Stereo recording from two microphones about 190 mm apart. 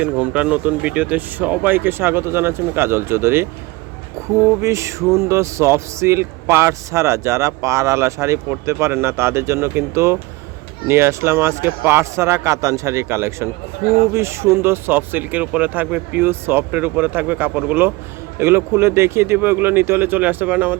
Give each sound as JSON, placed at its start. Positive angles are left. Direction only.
{"t": 0.0, "sound": "speech", "side_deg": -5}